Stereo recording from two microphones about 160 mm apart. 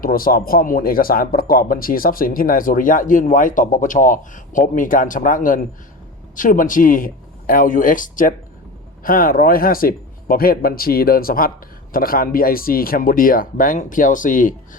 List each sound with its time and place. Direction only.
0.0 s speech: 65° left (ahead or behind)